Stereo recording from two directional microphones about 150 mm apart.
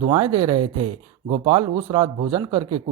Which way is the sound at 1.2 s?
40° right (ahead or behind).